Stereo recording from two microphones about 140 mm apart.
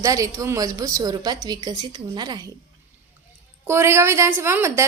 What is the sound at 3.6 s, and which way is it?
A woman's voice, 20° right (ahead or behind).